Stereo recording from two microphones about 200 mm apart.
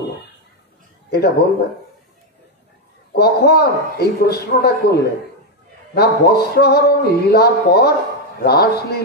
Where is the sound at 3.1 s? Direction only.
55° left (ahead or behind).